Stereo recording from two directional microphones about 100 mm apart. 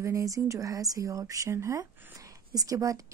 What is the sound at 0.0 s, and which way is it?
A woman's voice, 35° right (ahead or behind).